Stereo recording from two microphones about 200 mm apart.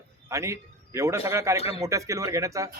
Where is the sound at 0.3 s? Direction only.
15° right (ahead or behind).